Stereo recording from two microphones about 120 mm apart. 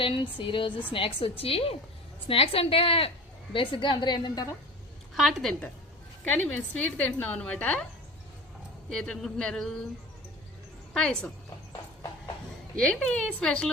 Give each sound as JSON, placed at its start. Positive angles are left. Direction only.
{"t": 0.0, "sound": "a woman's voice", "side_deg": 45}
{"t": 5.1, "sound": "speech", "side_deg": 0}
{"t": 6.2, "sound": "a woman's voice", "side_deg": 10}
{"t": 8.9, "sound": "speech", "side_deg": 5}
{"t": 10.9, "sound": "a woman's voice", "side_deg": 5}
{"t": 12.7, "sound": "a woman's voice", "side_deg": 10}